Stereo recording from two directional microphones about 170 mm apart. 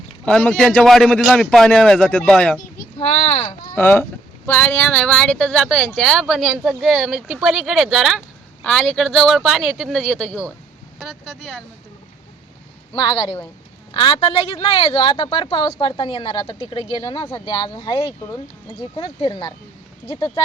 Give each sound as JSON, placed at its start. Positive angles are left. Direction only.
{"t": 0.3, "sound": "a man's voice", "side_deg": 5}
{"t": 3.0, "sound": "speech", "side_deg": 35}
{"t": 3.8, "sound": "a man's voice", "side_deg": 10}
{"t": 12.9, "sound": "speech", "side_deg": 25}